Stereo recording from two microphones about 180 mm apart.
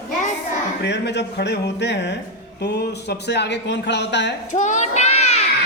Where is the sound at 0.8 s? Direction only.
70° left (ahead or behind).